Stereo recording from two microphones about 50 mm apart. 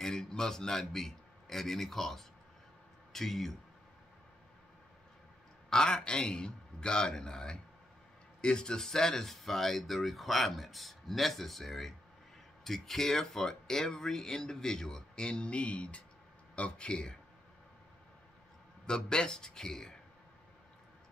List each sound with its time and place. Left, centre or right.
0.0 s a man's voice: centre
5.7 s speech: centre
18.9 s speech: centre